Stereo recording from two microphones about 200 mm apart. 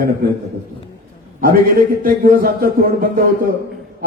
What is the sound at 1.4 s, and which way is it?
A man's voice, 45° right (ahead or behind).